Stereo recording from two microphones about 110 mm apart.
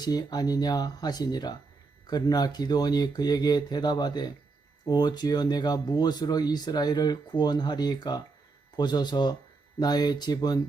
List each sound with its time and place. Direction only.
0.0 s speech: 35° left (ahead or behind)